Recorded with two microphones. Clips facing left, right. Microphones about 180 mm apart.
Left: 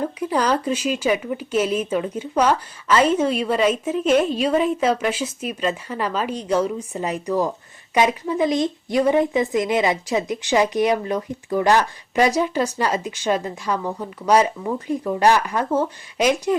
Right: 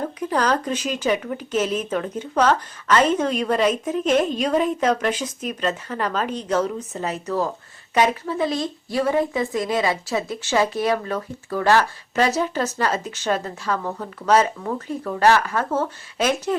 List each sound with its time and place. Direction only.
0.2 s a woman's voice: 10° left (ahead or behind)